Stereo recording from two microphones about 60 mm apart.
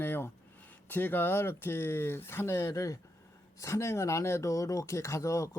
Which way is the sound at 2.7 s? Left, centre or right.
Left.